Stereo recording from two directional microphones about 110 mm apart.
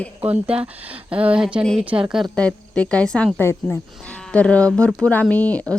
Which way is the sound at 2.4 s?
10° left (ahead or behind).